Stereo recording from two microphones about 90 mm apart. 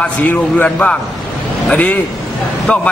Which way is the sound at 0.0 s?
20° left (ahead or behind).